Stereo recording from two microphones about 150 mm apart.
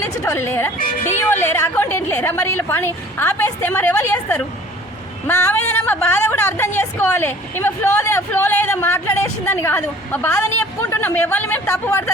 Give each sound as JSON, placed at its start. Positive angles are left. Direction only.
{"t": 0.0, "sound": "a woman's voice", "side_deg": 15}